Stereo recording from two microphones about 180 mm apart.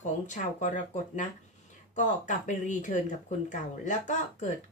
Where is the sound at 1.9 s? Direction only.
45° left (ahead or behind).